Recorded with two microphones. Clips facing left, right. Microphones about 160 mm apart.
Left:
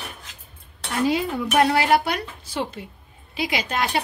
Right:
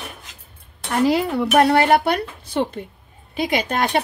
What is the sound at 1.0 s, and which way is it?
A woman's voice, 65° right (ahead or behind).